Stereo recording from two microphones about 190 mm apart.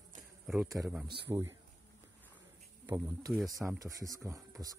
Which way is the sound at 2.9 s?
15° right (ahead or behind).